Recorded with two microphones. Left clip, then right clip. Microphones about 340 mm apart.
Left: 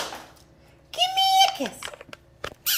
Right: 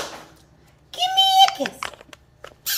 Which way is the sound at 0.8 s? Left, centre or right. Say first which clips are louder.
Right 3 dB; centre.